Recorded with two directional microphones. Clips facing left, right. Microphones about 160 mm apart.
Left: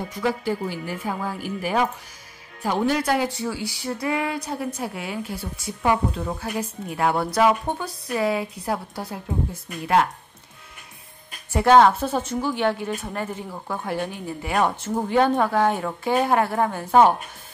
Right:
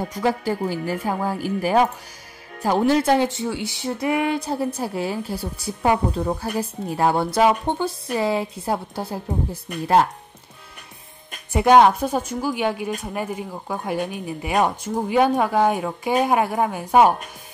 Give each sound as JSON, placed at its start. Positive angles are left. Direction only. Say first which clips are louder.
{"t": 0.1, "sound": "speech", "louder": "right 1 dB", "side_deg": -40}
{"t": 3.0, "sound": "speech", "louder": "right 4 dB", "side_deg": -25}
{"t": 11.5, "sound": "a woman's voice", "louder": "right 1 dB", "side_deg": -15}